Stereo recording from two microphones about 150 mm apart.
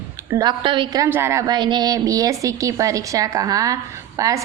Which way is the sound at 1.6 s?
30° right (ahead or behind).